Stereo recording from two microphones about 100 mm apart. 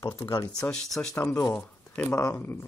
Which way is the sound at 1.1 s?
30° left (ahead or behind).